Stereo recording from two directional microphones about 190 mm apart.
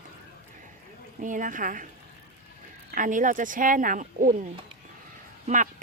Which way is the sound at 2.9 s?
45° right (ahead or behind).